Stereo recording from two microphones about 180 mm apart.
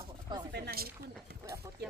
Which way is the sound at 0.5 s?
60° right (ahead or behind).